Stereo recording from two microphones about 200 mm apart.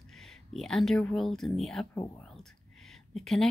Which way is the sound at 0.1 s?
Centre (ahead or behind).